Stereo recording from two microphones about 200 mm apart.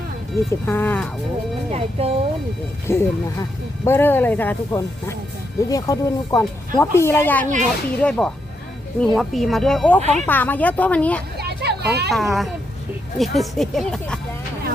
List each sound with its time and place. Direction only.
0.6 s speech: 10° left (ahead or behind)
1.7 s speech: 30° right (ahead or behind)
2.8 s speech: 15° left (ahead or behind)
10.0 s speech: 35° right (ahead or behind)
10.2 s speech: 10° left (ahead or behind)
11.3 s children playing: 55° right (ahead or behind)
12.1 s speech: centre (ahead or behind)